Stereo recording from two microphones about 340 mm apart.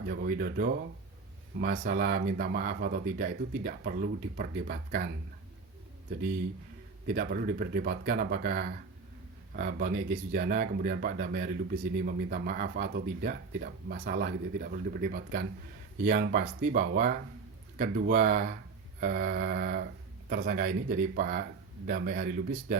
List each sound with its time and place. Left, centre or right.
0.1 s speech: right
7.1 s speech: right